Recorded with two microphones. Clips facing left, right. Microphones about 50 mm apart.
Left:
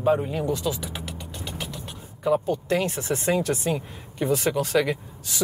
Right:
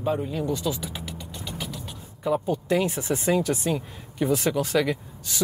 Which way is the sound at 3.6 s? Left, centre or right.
Centre.